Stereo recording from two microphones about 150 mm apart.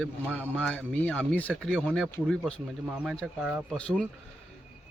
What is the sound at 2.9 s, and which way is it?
Speech, 5° right (ahead or behind).